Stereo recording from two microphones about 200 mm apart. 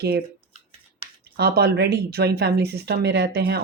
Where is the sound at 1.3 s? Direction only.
55° right (ahead or behind).